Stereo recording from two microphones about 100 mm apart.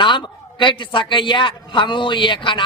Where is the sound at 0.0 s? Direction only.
55° left (ahead or behind).